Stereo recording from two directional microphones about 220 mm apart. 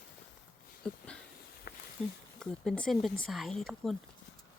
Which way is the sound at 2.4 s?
5° left (ahead or behind).